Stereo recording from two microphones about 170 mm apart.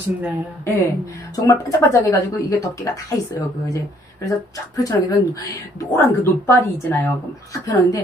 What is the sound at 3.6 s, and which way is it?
A woman's voice, 20° left (ahead or behind).